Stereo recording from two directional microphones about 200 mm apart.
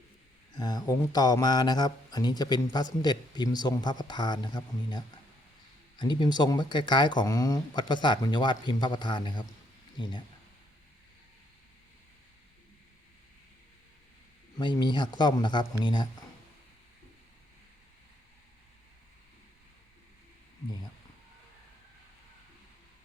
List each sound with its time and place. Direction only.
0.6 s speech: 20° left (ahead or behind)
14.6 s speech: 20° left (ahead or behind)